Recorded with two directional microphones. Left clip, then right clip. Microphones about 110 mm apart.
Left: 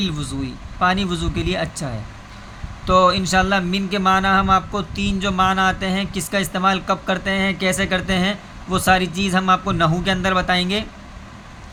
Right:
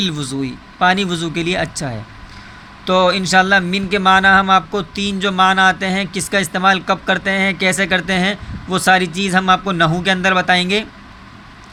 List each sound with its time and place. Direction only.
0.0 s speech: 40° right (ahead or behind)